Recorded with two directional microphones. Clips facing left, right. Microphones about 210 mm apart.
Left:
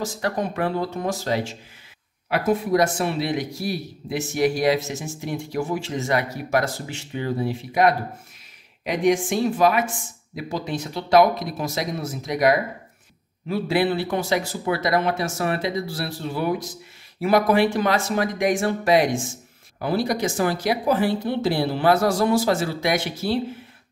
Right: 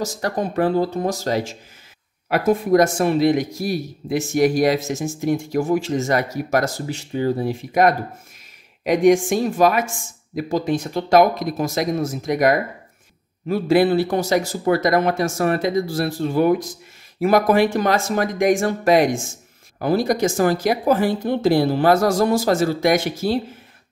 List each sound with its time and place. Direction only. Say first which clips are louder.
0.2 s speech: right 4 dB; 35° right (ahead or behind)